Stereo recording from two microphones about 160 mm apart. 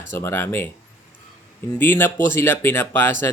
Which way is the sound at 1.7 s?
10° left (ahead or behind).